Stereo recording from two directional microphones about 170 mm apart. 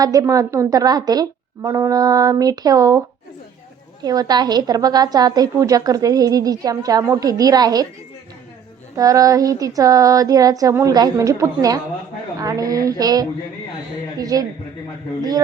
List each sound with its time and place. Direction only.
0.0 s a woman's voice: 20° right (ahead or behind)
4.0 s a woman's voice: 20° right (ahead or behind)
9.0 s a woman's voice: 20° right (ahead or behind)